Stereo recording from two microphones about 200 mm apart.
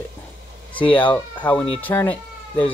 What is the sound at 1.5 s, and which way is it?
Speech, 25° left (ahead or behind).